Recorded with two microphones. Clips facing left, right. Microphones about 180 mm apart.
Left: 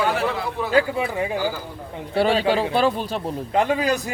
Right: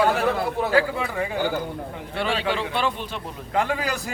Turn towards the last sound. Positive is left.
turn(degrees=20)  # may be behind; listen again after turning